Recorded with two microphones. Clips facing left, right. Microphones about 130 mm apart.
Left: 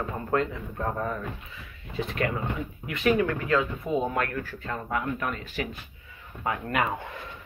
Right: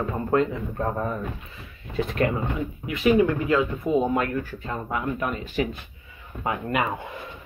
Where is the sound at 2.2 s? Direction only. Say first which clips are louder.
Right 5 dB; 35° right (ahead or behind).